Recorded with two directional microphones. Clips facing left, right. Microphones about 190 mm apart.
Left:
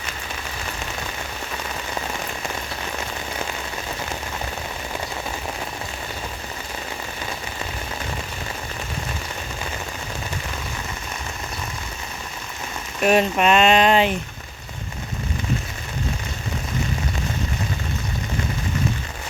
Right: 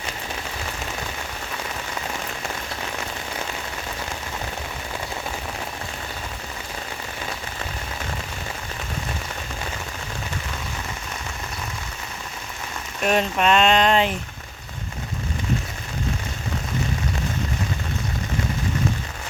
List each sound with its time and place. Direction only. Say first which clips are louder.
13.0 s speech: left 3 dB; 10° left (ahead or behind)